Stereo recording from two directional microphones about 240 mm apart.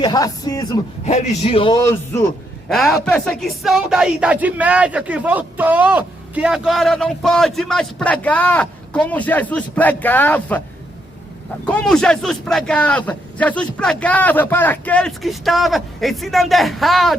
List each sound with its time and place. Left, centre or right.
0.0 s speech: centre
1.0 s a man's voice: left; by 10.6 s centre
11.6 s a man's voice: centre